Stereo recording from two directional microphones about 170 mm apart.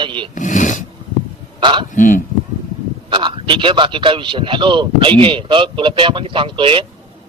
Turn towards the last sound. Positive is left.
turn(degrees=-30)  # may be behind; listen again after turning